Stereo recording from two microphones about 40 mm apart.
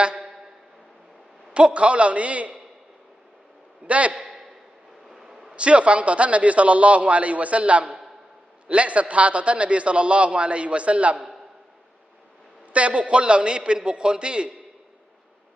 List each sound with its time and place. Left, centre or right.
1.5 s a man's voice: right
3.8 s a man's voice: right
5.0 s a sound: centre
5.5 s a man's voice: right
12.7 s a man's voice: right